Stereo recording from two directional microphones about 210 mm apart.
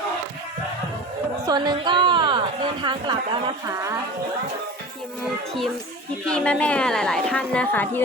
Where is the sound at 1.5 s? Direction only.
20° right (ahead or behind).